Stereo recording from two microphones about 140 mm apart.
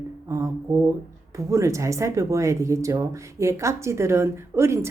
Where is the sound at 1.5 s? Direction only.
20° right (ahead or behind).